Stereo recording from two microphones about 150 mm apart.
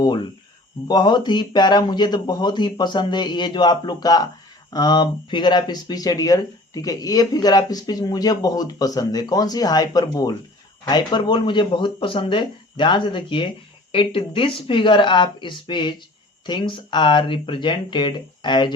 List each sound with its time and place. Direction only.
0.9 s speech: 30° left (ahead or behind)